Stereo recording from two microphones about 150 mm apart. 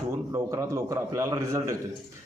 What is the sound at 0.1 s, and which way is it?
A man's voice, 20° right (ahead or behind).